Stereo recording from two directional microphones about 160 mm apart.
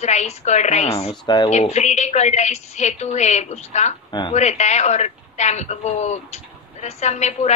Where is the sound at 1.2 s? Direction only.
25° left (ahead or behind).